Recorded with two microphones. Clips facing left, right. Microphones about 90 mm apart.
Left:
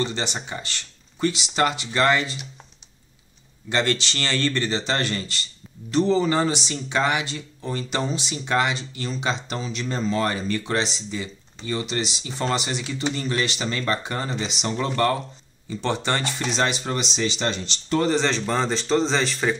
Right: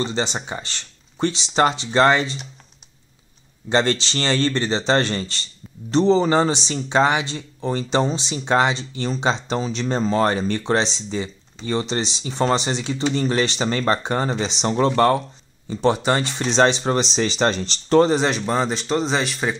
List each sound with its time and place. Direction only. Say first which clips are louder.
0.0 s speech: right 3 dB; 25° right (ahead or behind)
3.6 s speech: right 4 dB; 25° right (ahead or behind)
15.7 s speech: right 6 dB; 20° right (ahead or behind); by 18.0 s 40° right (ahead or behind)
18.0 s speech: right 3 dB; 15° right (ahead or behind)